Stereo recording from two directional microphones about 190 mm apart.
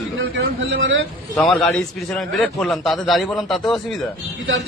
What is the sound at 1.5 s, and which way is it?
A man's voice, 5° left (ahead or behind).